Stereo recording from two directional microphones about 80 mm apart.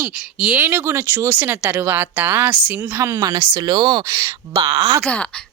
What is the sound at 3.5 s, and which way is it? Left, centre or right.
Speech, right.